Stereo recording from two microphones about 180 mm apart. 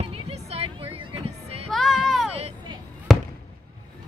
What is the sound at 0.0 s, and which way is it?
Vehicle, 35° right (ahead or behind).